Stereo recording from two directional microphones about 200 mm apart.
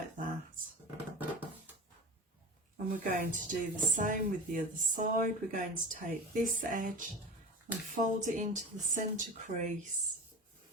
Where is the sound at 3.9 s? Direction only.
40° right (ahead or behind).